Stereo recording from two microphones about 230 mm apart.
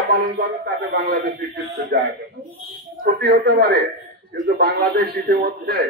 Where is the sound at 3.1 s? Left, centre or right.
Right.